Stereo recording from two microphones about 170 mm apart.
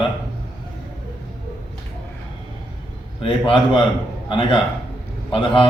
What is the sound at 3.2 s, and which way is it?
A man's voice, 30° left (ahead or behind).